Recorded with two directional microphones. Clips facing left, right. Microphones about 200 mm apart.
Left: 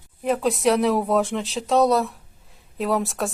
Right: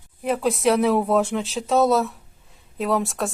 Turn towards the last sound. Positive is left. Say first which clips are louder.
# even
turn(degrees=0)  # may be behind; listen again after turning